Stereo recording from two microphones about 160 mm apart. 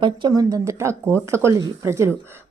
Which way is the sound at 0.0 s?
25° right (ahead or behind).